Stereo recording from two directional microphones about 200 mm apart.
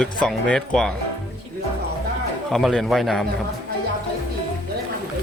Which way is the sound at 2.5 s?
Centre (ahead or behind).